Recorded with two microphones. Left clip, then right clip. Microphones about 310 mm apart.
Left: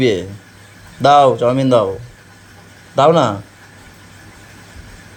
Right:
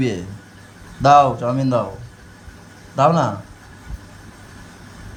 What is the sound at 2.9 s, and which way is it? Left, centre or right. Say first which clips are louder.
Speech: left 5 dB; centre.